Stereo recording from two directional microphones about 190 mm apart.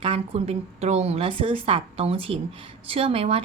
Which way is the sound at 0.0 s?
30° right (ahead or behind).